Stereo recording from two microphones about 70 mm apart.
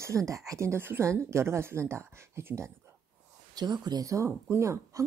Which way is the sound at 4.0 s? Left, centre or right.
Right.